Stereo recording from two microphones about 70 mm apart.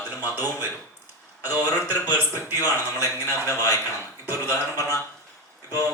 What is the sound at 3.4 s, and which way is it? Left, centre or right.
Speech, left.